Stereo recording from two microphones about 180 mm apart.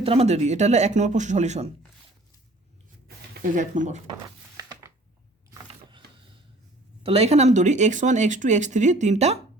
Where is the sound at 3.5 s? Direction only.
45° right (ahead or behind).